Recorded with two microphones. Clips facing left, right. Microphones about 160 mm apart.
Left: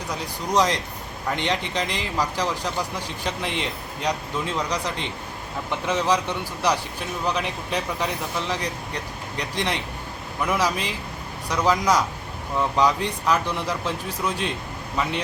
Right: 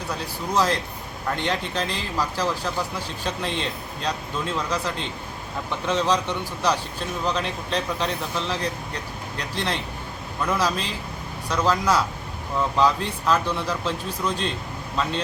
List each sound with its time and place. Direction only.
0.1 s speech: 15° left (ahead or behind)